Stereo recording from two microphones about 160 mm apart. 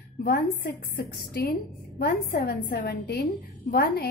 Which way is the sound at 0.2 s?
70° left (ahead or behind).